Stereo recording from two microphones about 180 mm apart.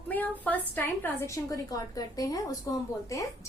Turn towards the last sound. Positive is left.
turn(degrees=20)  # may be behind; listen again after turning